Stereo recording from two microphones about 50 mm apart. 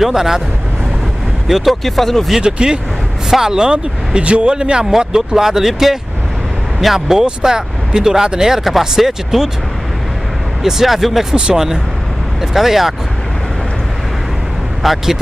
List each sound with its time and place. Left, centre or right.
0.0 s speech: centre
1.5 s speech: centre
2.3 s speech: centre
10.6 s speech: centre
11.3 s speech: centre
14.8 s speech: centre